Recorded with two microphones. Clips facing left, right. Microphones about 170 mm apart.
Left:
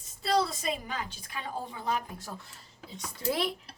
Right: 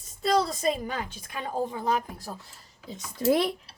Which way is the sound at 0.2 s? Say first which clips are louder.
Right 3 dB; 40° right (ahead or behind).